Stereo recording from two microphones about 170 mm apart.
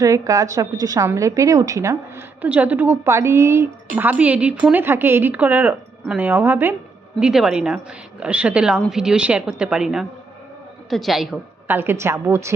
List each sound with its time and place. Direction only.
0.0 s a woman's voice: 20° right (ahead or behind); by 11.3 s centre (ahead or behind)
11.7 s a woman's voice: 15° right (ahead or behind)